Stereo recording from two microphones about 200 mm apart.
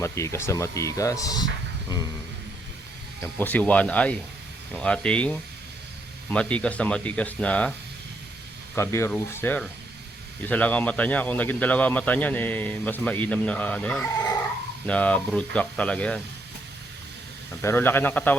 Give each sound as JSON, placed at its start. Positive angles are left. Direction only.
{"t": 0.0, "sound": "a man's voice", "side_deg": 15}
{"t": 3.3, "sound": "a man's voice", "side_deg": 10}
{"t": 8.7, "sound": "a man's voice", "side_deg": 15}
{"t": 17.6, "sound": "a man's voice", "side_deg": 10}